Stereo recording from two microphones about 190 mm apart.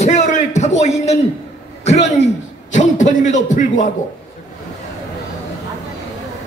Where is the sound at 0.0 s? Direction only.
35° left (ahead or behind).